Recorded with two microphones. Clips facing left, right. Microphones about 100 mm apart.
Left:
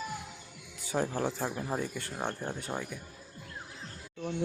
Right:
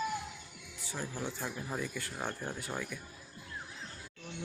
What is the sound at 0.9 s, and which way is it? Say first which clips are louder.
Speech: left 8 dB; 55° left (ahead or behind).